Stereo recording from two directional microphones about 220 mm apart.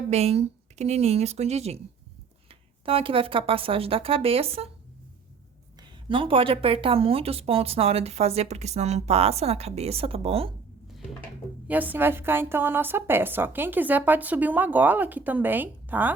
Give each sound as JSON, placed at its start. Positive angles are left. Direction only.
{"t": 0.1, "sound": "speech", "side_deg": -30}
{"t": 5.8, "sound": "speech", "side_deg": -25}
{"t": 11.7, "sound": "a woman's voice", "side_deg": -10}